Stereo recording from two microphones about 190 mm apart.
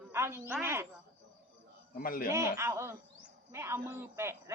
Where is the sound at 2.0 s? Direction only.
50° left (ahead or behind).